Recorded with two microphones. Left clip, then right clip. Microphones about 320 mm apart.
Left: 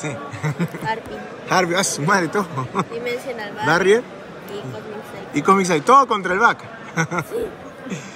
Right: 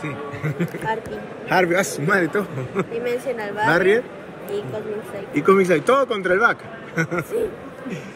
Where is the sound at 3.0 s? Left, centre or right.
Centre.